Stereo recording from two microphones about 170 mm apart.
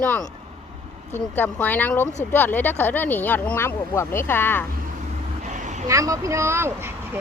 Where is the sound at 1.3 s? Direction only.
10° left (ahead or behind).